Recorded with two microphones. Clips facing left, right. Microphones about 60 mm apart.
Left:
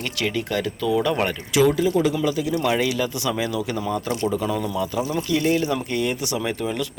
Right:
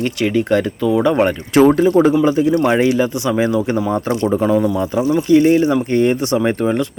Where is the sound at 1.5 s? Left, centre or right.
Right.